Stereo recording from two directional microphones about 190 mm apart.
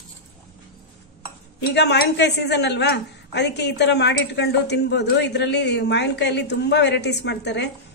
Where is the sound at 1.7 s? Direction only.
60° left (ahead or behind).